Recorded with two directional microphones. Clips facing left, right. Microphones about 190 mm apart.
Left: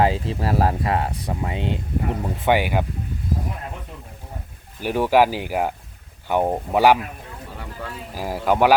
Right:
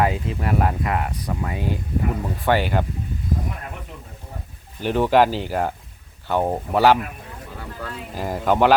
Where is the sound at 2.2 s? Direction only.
15° left (ahead or behind).